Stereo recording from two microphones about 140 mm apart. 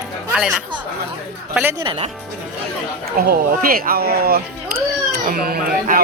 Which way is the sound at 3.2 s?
90° right.